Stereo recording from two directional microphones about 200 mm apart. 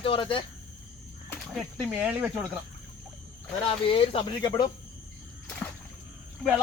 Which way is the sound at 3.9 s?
30° left (ahead or behind).